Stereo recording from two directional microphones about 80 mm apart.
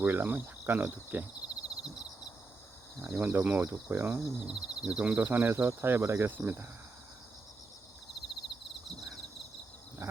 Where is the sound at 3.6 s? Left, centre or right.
Right.